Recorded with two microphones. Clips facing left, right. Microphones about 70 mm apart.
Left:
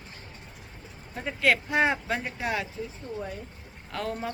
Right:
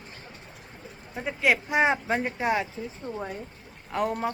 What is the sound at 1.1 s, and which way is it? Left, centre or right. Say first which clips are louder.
Speech: even; centre.